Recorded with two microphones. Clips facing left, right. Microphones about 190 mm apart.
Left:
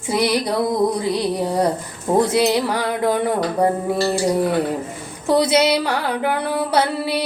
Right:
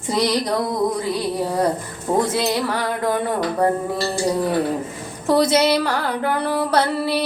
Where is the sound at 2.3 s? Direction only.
15° left (ahead or behind).